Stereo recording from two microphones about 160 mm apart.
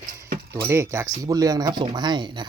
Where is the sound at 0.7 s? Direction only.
15° right (ahead or behind).